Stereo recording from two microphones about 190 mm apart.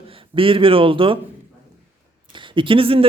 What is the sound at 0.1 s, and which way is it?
A man's voice, 30° right (ahead or behind).